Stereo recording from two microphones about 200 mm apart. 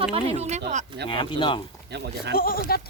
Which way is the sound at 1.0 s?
25° left (ahead or behind).